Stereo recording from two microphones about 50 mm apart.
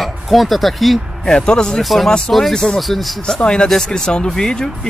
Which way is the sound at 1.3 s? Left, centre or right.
Centre.